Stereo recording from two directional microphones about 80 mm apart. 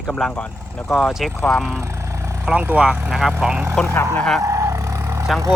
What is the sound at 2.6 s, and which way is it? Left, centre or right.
Speech, centre.